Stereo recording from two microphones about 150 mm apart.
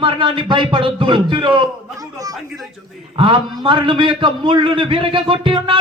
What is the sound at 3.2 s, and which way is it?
Speech, 35° right (ahead or behind).